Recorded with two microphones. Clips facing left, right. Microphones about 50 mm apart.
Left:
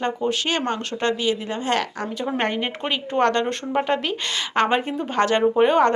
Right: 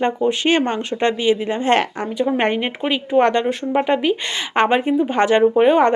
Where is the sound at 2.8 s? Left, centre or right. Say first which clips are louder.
Right 5 dB; centre.